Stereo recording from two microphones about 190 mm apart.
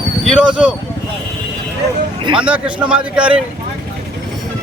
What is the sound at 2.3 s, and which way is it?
Speech, 5° right (ahead or behind).